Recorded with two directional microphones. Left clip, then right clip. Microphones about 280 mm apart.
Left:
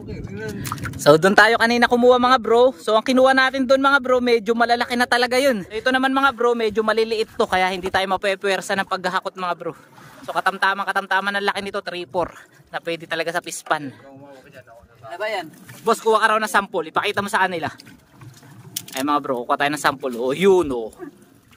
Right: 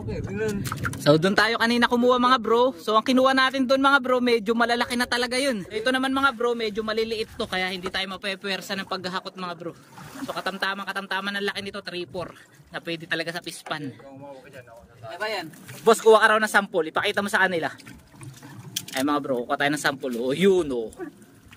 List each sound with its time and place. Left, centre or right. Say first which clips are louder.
0.6 s speech: left 1 dB; centre
15.1 s speech: left 4 dB; centre
15.8 s speech: right 1 dB; centre
18.9 s speech: left 4 dB; centre